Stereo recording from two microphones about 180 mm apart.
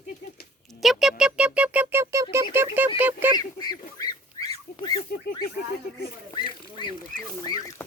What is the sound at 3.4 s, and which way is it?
Goose, 20° left (ahead or behind).